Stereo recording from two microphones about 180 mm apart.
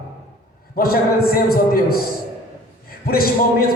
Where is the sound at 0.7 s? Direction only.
55° left (ahead or behind).